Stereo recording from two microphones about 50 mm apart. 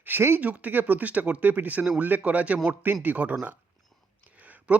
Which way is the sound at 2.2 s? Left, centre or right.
Right.